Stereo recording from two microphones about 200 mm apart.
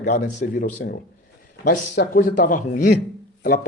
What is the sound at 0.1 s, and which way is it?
A man's voice, 40° left (ahead or behind).